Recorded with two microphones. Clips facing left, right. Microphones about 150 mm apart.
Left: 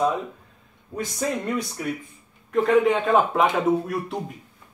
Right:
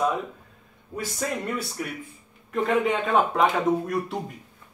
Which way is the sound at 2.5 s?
Centre (ahead or behind).